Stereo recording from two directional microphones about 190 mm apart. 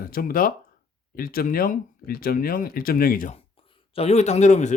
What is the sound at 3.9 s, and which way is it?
Speech, 35° left (ahead or behind).